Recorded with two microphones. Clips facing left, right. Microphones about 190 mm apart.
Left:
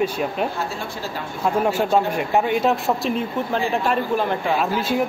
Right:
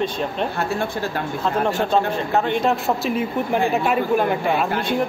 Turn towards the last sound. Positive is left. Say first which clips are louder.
# even
turn(degrees=5)  # may be behind; listen again after turning